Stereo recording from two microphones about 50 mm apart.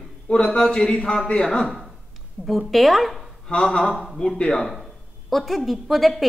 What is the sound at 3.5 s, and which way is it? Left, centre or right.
Speech, left.